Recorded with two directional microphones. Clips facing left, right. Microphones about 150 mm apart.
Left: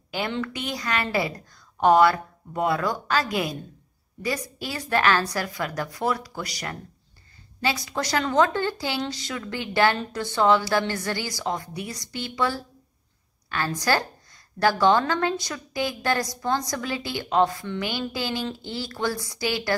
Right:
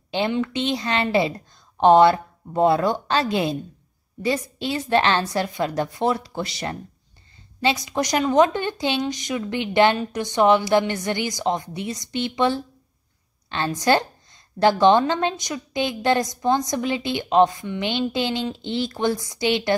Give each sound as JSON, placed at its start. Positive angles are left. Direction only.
{"t": 0.1, "sound": "a woman's voice", "side_deg": -20}